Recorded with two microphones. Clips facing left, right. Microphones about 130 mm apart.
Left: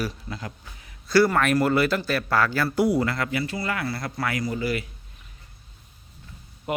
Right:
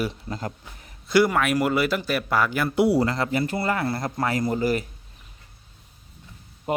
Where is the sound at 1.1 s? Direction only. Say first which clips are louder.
Even; 15° right (ahead or behind).